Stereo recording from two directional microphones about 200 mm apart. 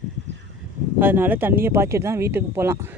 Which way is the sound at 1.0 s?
10° right (ahead or behind).